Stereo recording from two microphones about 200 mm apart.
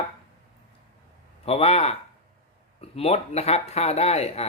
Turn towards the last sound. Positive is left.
turn(degrees=30)  # may be behind; listen again after turning